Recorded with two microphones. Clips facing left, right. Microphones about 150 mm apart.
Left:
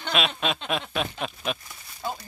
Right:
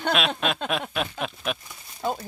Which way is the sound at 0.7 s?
Centre (ahead or behind).